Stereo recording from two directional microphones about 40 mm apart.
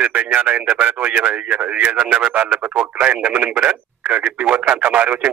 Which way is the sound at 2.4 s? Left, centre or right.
Right.